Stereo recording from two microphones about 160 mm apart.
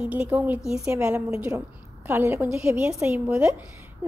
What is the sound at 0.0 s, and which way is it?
A woman's voice, 10° right (ahead or behind).